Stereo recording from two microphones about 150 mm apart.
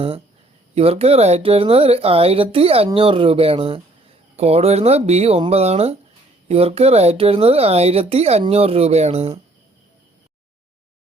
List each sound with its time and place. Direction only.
0.8 s speech: 40° right (ahead or behind)